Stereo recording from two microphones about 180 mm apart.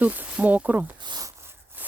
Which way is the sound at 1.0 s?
20° right (ahead or behind).